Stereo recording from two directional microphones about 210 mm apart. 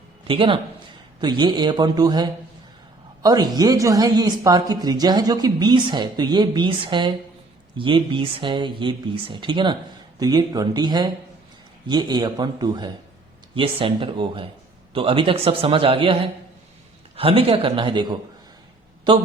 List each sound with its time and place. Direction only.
0.3 s speech: 25° right (ahead or behind)
17.2 s speech: 25° right (ahead or behind)